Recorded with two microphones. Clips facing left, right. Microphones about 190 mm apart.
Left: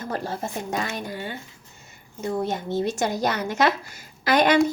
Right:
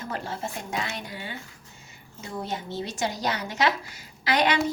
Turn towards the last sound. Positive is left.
turn(degrees=50)  # may be behind; listen again after turning